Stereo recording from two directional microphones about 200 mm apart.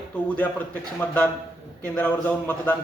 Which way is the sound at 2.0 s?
10° left (ahead or behind).